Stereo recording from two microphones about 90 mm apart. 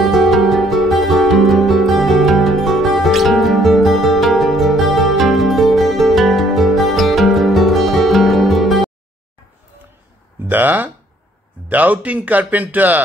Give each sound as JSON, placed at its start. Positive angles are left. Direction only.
{"t": 0.0, "sound": "music", "side_deg": 0}
{"t": 10.5, "sound": "a sound", "side_deg": -20}
{"t": 11.7, "sound": "speech", "side_deg": -20}